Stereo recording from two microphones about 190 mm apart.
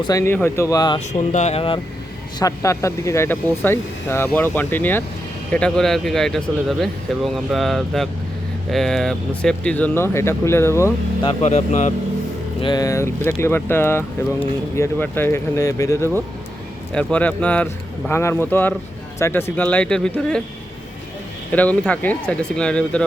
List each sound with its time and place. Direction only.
0.0 s speech: 15° left (ahead or behind)
0.9 s speech: 35° left (ahead or behind)
2.4 s speech: 15° left (ahead or behind)
11.3 s speech: 35° left (ahead or behind)
12.6 s speech: 20° left (ahead or behind)
21.5 s speech: 10° left (ahead or behind)